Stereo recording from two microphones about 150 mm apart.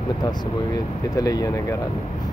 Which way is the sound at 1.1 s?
25° left (ahead or behind).